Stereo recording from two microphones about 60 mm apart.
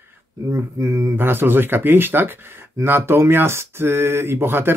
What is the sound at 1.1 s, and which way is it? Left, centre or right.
Speech, right.